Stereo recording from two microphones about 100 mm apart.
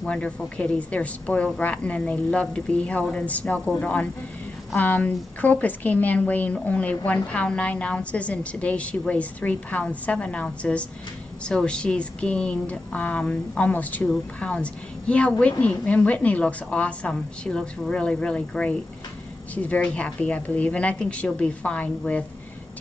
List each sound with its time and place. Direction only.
0.0 s a woman's voice: 10° left (ahead or behind)